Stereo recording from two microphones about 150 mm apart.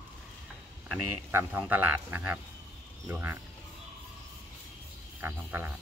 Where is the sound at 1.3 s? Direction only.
10° right (ahead or behind).